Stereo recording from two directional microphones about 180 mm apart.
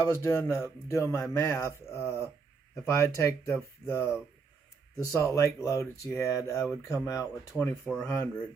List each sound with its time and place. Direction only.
0.0 s speech: 15° left (ahead or behind)
7.6 s speech: 5° left (ahead or behind)